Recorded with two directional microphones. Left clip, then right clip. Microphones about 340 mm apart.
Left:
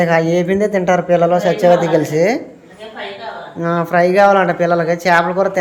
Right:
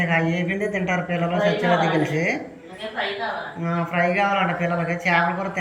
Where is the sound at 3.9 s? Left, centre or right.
Centre.